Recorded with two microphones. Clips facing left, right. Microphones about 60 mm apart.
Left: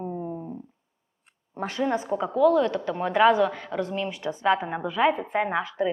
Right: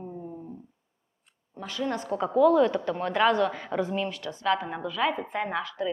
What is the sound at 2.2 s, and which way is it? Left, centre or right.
Speech, centre.